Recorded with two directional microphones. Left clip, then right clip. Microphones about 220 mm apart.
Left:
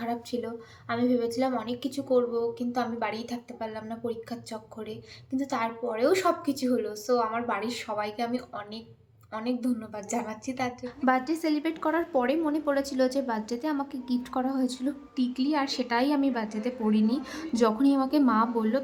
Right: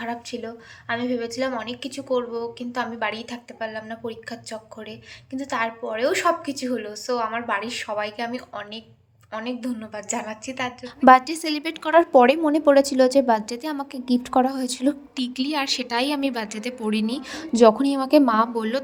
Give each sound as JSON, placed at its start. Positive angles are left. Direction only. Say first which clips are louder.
{"t": 0.0, "sound": "a woman's voice", "louder": "right 2 dB", "side_deg": 5}
{"t": 10.8, "sound": "a woman's voice", "louder": "right 13 dB", "side_deg": -30}